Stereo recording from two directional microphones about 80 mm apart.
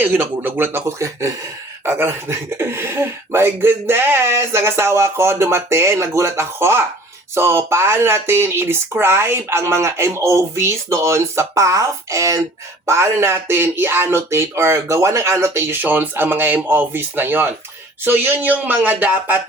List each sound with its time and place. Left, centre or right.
0.0 s speech: right